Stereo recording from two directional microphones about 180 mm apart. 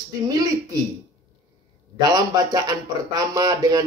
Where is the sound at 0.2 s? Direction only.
20° right (ahead or behind).